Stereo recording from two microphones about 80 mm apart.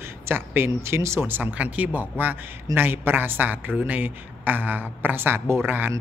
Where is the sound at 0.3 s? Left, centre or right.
Right.